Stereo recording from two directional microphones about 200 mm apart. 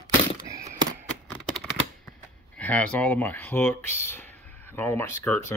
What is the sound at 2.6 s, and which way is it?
Speech, 10° left (ahead or behind).